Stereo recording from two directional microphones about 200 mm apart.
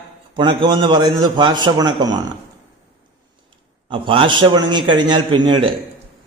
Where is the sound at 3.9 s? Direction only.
25° right (ahead or behind).